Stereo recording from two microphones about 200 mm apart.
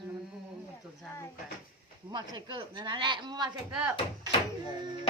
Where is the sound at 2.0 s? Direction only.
20° right (ahead or behind).